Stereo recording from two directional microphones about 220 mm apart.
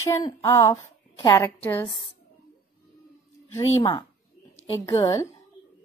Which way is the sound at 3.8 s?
25° left (ahead or behind).